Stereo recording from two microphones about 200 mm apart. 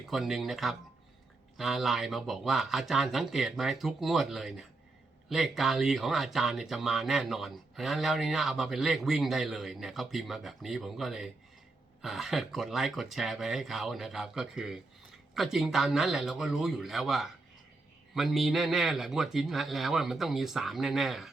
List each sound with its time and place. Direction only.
0.0 s speech: centre (ahead or behind)